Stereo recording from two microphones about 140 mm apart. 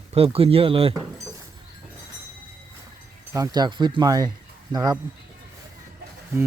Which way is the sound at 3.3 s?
25° right (ahead or behind).